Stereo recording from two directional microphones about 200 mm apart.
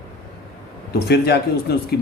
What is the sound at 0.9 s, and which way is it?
Speech, 55° left (ahead or behind).